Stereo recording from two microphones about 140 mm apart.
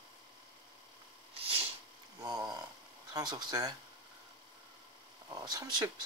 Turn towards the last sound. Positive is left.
turn(degrees=-30)  # may be behind; listen again after turning